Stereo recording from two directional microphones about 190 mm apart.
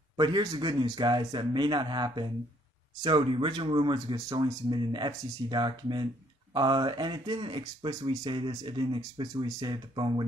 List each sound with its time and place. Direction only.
0.2 s speech: 25° right (ahead or behind)